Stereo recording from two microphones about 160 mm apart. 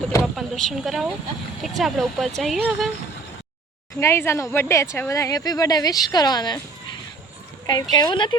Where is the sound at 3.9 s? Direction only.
15° left (ahead or behind).